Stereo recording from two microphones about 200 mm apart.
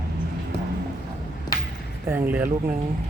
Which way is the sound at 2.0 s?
10° right (ahead or behind).